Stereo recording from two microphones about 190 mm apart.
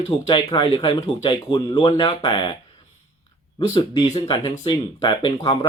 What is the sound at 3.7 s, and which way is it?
Speech, 25° left (ahead or behind).